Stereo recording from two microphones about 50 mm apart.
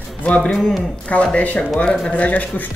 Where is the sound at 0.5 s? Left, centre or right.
Centre.